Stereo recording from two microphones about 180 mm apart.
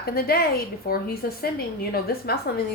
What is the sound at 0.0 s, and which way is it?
Speech, 60° left (ahead or behind).